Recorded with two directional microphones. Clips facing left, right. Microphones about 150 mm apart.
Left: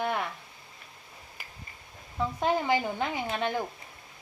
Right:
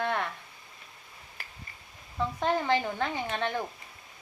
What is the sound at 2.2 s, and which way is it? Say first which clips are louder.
Speech: left 1 dB; 10° left (ahead or behind).